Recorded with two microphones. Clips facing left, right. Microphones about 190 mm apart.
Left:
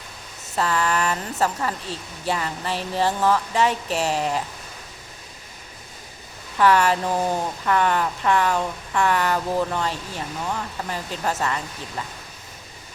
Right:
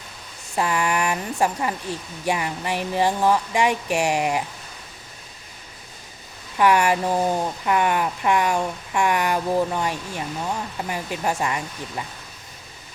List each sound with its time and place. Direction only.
0.5 s speech: 15° right (ahead or behind)
6.6 s speech: 15° right (ahead or behind)